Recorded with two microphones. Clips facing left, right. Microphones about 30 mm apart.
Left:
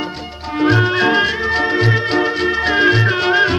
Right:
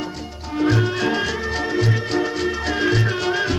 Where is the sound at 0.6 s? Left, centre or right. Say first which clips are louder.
Left 6 dB; left.